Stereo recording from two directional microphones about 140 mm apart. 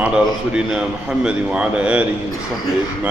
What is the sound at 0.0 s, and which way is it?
A man's voice, 10° right (ahead or behind).